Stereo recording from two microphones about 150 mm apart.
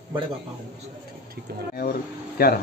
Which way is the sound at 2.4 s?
80° left.